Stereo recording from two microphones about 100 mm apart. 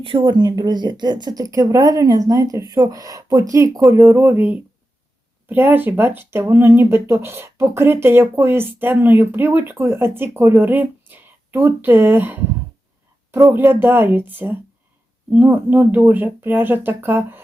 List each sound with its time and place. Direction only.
0.0 s speech: 55° right (ahead or behind); by 12.4 s 20° right (ahead or behind)
13.5 s speech: 20° right (ahead or behind)